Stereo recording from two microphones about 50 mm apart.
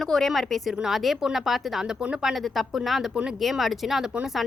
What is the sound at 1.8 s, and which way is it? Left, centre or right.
Speech, centre.